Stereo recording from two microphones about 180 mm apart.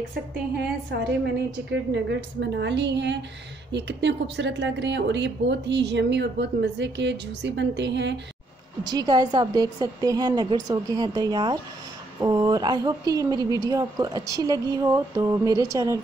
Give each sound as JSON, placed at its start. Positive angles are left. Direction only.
{"t": 1.2, "sound": "speech", "side_deg": -75}
{"t": 8.8, "sound": "a woman's voice", "side_deg": -20}